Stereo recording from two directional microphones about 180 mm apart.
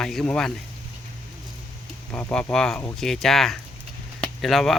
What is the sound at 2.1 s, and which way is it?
Speech, 10° left (ahead or behind).